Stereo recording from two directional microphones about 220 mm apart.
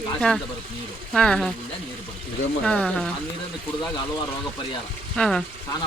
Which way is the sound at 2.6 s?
5° left (ahead or behind).